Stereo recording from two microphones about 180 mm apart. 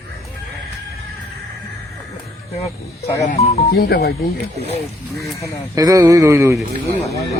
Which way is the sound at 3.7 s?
60° left (ahead or behind).